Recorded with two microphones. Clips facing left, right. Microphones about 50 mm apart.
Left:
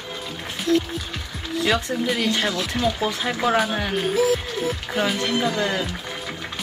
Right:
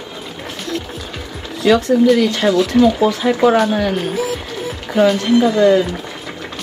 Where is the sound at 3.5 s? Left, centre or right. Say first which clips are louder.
Right 7 dB; centre.